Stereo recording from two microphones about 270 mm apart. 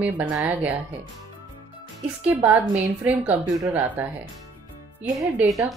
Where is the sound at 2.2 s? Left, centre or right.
Centre.